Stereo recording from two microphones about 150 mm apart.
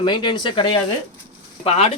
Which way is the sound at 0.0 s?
30° left (ahead or behind).